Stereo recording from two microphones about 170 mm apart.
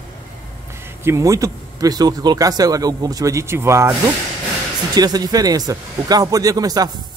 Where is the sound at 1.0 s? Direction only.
20° right (ahead or behind).